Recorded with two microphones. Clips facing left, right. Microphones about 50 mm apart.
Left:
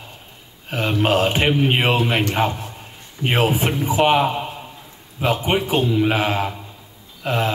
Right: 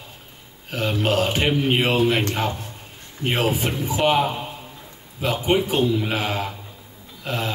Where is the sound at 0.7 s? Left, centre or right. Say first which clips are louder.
Left 3 dB; left.